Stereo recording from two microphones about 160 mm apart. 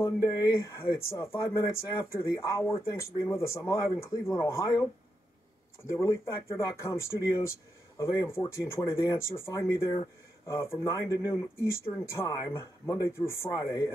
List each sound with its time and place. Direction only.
0.0 s speech: 20° left (ahead or behind)
5.9 s speech: 15° left (ahead or behind)